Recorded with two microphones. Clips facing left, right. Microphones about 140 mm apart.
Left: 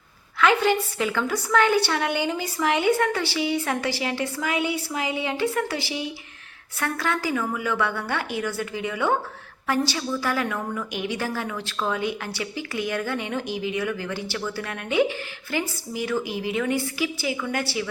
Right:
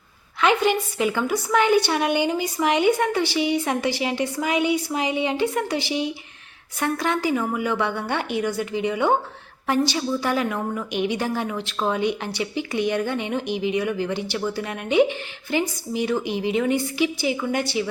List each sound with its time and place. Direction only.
0.3 s a woman's voice: 20° right (ahead or behind)